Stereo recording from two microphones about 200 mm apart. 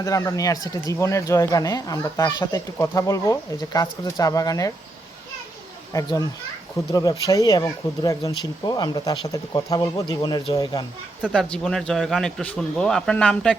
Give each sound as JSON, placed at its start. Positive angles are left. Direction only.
{"t": 0.0, "sound": "speech", "side_deg": 15}
{"t": 5.9, "sound": "speech", "side_deg": 15}
{"t": 11.2, "sound": "speech", "side_deg": 0}